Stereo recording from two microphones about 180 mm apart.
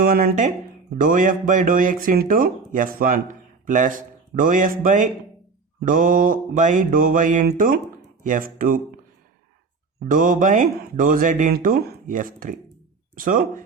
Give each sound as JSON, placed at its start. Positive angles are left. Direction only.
{"t": 0.0, "sound": "speech", "side_deg": -55}
{"t": 10.1, "sound": "speech", "side_deg": -50}
{"t": 11.5, "sound": "speech", "side_deg": -55}